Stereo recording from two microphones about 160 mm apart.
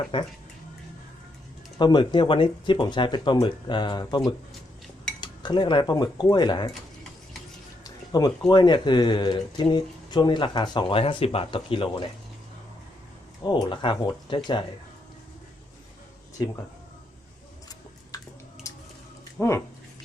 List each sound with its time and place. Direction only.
0.1 s speech: 35° left (ahead or behind)
1.8 s speech: 30° left (ahead or behind)
5.2 s cutlery: 30° left (ahead or behind)
5.8 s speech: 25° left (ahead or behind)
7.9 s a sound: 25° left (ahead or behind)
8.4 s speech: 30° left (ahead or behind)
13.4 s speech: 30° left (ahead or behind)
18.6 s a sound: 20° left (ahead or behind)
19.4 s speech: 20° left (ahead or behind)